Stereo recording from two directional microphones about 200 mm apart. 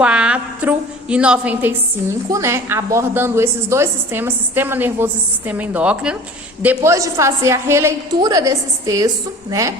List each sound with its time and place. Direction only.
0.0 s a woman's voice: 5° right (ahead or behind)